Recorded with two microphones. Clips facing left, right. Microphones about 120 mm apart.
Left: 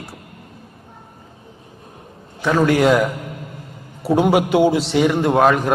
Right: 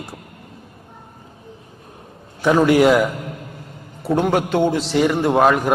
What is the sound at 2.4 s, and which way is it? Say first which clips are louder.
Speech: right 2 dB; 15° right (ahead or behind).